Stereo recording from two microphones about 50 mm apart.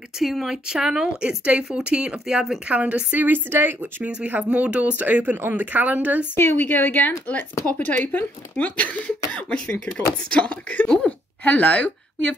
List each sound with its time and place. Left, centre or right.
0.2 s speech: centre
0.7 s speech: centre
2.7 s speech: right
3.3 s a woman's voice: right
4.5 s speech: right
6.3 s speech: left